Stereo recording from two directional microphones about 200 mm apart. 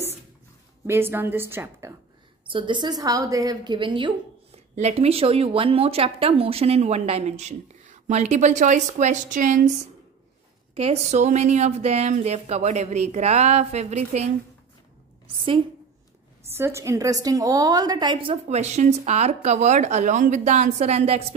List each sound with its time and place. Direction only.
0.8 s a woman's voice: 10° right (ahead or behind)
2.5 s a woman's voice: 25° right (ahead or behind)
16.5 s speech: 15° right (ahead or behind); by 21.3 s 30° right (ahead or behind)